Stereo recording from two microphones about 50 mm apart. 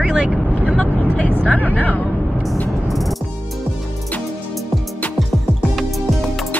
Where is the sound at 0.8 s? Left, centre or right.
Left.